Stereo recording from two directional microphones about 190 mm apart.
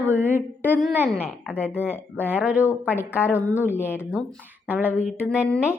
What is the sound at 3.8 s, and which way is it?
Speech, 10° left (ahead or behind).